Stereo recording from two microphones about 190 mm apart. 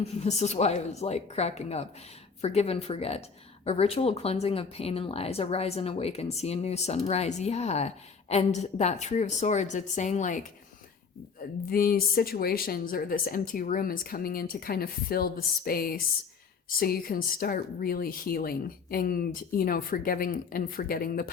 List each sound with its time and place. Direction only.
0.2 s speech: 35° left (ahead or behind)
11.7 s a woman's voice: 50° left (ahead or behind)